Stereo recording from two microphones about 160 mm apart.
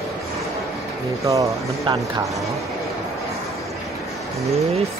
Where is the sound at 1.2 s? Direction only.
20° right (ahead or behind).